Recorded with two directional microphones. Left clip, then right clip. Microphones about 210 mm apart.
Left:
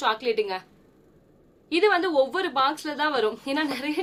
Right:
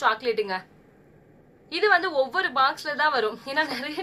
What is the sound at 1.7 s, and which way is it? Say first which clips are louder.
A woman's voice: even; 35° left (ahead or behind).